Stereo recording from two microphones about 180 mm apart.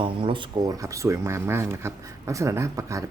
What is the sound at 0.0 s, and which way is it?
Speech, 30° right (ahead or behind).